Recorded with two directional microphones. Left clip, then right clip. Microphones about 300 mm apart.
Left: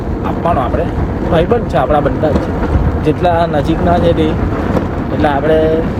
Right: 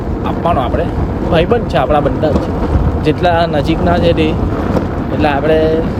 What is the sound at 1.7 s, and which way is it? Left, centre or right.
Speech, centre.